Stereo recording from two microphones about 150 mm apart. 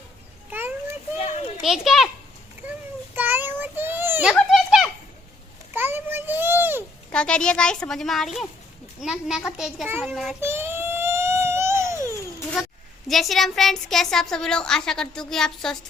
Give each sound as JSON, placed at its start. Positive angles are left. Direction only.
{"t": 0.5, "sound": "a sound", "side_deg": -15}
{"t": 1.6, "sound": "speech", "side_deg": 0}
{"t": 3.2, "sound": "child singing", "side_deg": -15}
{"t": 4.4, "sound": "children playing", "side_deg": 0}
{"t": 5.7, "sound": "a sound", "side_deg": -15}
{"t": 7.1, "sound": "speech", "side_deg": 5}
{"t": 10.4, "sound": "baby cry", "side_deg": -15}
{"t": 12.6, "sound": "a sound", "side_deg": -5}
{"t": 13.1, "sound": "speech", "side_deg": 0}